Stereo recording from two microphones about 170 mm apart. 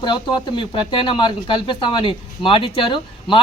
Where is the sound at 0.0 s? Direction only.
25° left (ahead or behind).